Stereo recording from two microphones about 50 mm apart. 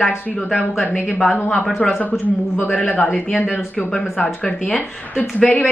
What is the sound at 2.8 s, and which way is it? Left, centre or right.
Speech, left.